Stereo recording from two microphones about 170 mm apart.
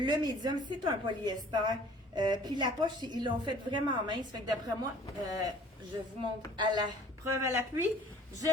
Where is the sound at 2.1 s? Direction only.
25° right (ahead or behind).